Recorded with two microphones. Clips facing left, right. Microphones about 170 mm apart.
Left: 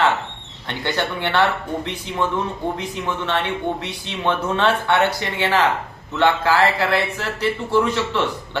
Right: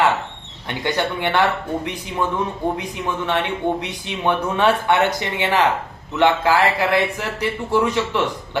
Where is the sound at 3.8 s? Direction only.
15° right (ahead or behind).